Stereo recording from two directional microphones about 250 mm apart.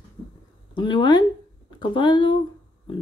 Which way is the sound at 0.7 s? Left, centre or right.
Centre.